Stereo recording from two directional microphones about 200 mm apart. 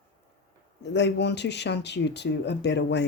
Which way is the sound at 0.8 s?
60° left (ahead or behind).